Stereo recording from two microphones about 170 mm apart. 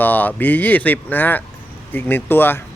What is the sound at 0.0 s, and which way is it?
Speech, 10° left (ahead or behind).